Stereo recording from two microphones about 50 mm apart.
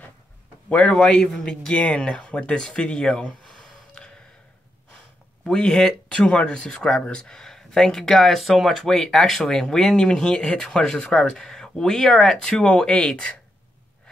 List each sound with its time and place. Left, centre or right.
0.7 s speech: left
0.9 s speech: centre
1.7 s speech: left; by 3.7 s centre
4.0 s gasp: centre
5.5 s speech: centre
8.5 s speech: centre
8.8 s speech: centre